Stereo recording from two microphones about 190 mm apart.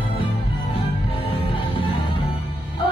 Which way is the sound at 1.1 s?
30° left (ahead or behind).